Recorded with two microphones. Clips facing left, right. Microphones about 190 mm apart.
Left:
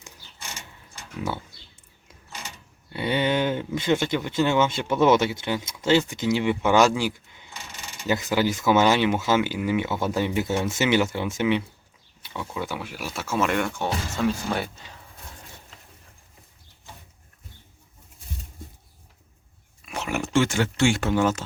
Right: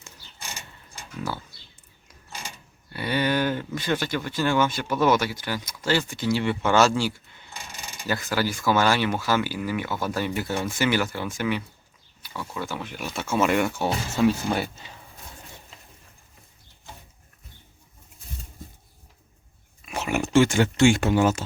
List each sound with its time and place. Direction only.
2.9 s speech: 20° left (ahead or behind); by 14.7 s 5° right (ahead or behind)
19.8 s a sound: 5° right (ahead or behind)
20.3 s speech: 15° right (ahead or behind)